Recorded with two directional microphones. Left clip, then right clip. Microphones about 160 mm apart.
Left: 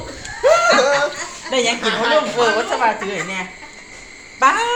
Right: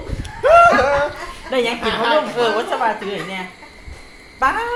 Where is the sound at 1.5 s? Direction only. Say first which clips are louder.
Left 1 dB; 20° right (ahead or behind).